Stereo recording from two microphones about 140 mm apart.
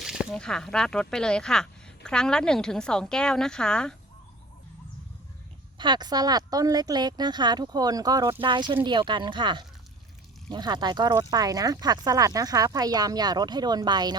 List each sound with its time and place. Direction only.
0.0 s a sound: 5° right (ahead or behind)
0.3 s a woman's voice: 5° left (ahead or behind)
5.7 s speech: 35° right (ahead or behind)